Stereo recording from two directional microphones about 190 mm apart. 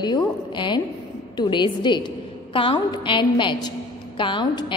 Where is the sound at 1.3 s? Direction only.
25° left (ahead or behind).